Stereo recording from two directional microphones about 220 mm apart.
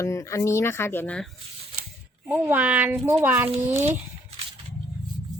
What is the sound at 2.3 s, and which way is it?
A child's voice, 5° right (ahead or behind).